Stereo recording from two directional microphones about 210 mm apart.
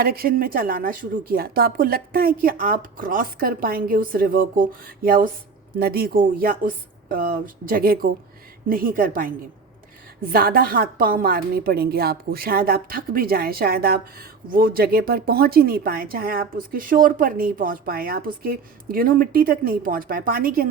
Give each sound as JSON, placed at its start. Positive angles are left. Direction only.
{"t": 0.0, "sound": "a woman's voice", "side_deg": -45}
{"t": 10.3, "sound": "a woman's voice", "side_deg": -45}